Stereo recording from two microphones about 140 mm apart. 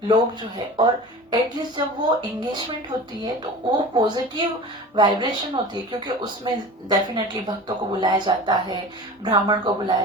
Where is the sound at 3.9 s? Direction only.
30° right (ahead or behind).